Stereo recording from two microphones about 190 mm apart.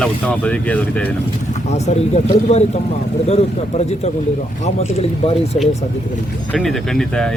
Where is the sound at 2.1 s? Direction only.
35° left (ahead or behind).